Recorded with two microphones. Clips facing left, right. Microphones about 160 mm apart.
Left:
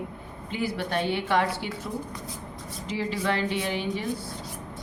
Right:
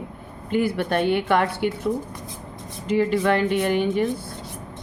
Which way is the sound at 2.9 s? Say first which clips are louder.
Right 8 dB; 55° right (ahead or behind).